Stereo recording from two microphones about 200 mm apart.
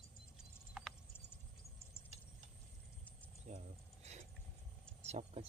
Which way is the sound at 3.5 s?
35° right (ahead or behind).